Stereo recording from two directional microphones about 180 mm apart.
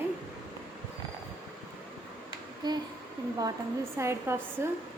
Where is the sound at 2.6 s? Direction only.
20° right (ahead or behind).